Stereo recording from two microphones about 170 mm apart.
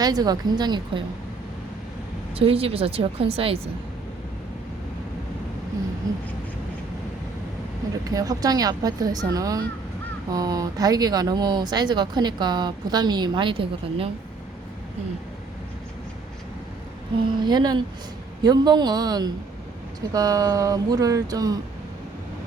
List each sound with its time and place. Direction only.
0.0 s speech: 25° right (ahead or behind)
2.3 s a woman's voice: 35° right (ahead or behind)
8.0 s speech: 20° right (ahead or behind)
17.4 s speech: 25° right (ahead or behind)